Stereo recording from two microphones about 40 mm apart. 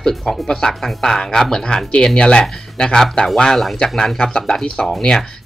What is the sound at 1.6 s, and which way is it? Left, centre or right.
Speech, left.